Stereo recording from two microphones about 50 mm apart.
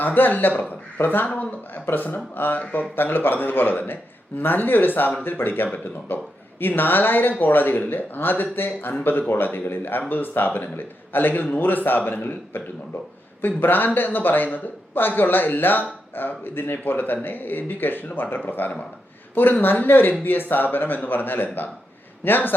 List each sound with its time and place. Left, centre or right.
0.0 s a man's voice: left